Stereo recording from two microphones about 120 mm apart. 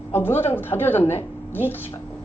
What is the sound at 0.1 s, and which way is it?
Speech, 20° left (ahead or behind).